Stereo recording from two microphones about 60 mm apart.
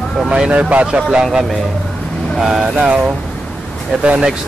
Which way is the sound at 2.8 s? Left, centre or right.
Right.